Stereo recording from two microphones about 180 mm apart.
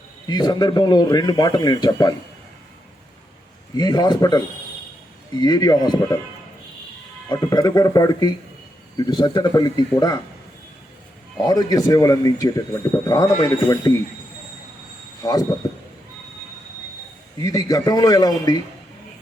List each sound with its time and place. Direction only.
0.3 s a man's voice: 25° left (ahead or behind)
3.8 s a man's voice: 20° left (ahead or behind)
7.3 s a man's voice: 20° left (ahead or behind)
11.3 s a man's voice: 20° left (ahead or behind)
15.2 s speech: 20° left (ahead or behind)
17.3 s a man's voice: 20° left (ahead or behind)